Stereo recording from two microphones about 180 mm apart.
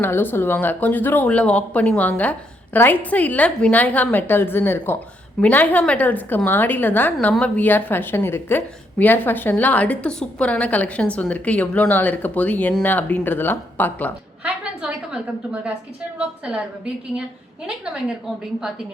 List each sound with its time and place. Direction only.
0.0 s a woman's voice: 10° left (ahead or behind)
14.4 s a woman's voice: 5° right (ahead or behind)
17.7 s a woman's voice: 5° right (ahead or behind)